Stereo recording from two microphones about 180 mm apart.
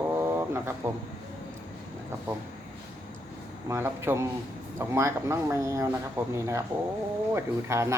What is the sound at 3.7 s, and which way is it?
Speech, 15° right (ahead or behind).